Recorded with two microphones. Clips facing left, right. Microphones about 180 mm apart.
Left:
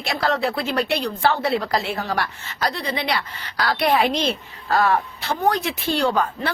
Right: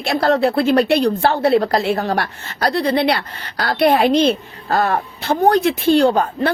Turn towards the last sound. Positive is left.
turn(degrees=-45)  # may be behind; listen again after turning